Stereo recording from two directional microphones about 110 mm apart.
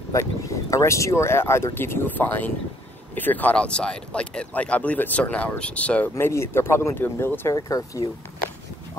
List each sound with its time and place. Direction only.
0.1 s speech: 30° left (ahead or behind)
7.5 s speech: 30° left (ahead or behind)